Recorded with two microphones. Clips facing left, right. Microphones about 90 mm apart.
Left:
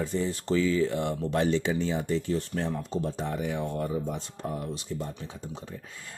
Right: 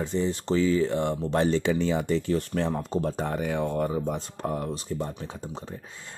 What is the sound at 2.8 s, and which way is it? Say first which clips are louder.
Speech: right 3 dB; 50° right (ahead or behind).